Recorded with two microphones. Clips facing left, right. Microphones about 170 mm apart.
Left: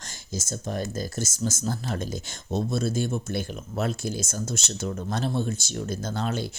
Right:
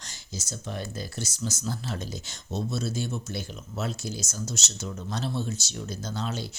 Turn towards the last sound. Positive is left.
turn(degrees=55)  # may be behind; listen again after turning